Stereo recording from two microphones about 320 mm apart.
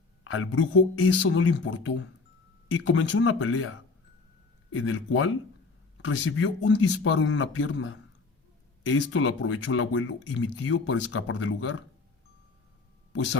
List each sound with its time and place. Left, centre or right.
0.3 s speech: left